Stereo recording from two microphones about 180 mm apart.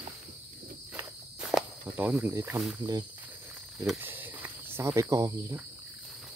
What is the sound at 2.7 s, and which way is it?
Speech, 20° right (ahead or behind).